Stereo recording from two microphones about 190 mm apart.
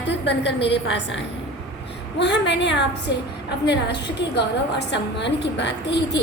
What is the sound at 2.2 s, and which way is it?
A woman's voice, 65° left (ahead or behind).